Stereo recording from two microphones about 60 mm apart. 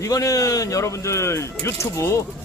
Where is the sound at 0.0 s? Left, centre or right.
Left.